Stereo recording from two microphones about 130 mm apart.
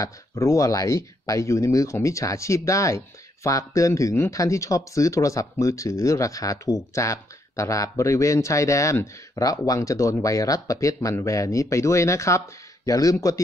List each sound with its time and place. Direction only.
0.0 s speech: 25° left (ahead or behind)